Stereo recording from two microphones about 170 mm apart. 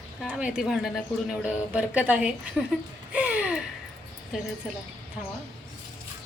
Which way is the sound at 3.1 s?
10° right (ahead or behind).